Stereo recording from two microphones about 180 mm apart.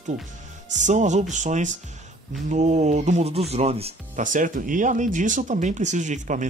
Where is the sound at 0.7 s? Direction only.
40° right (ahead or behind).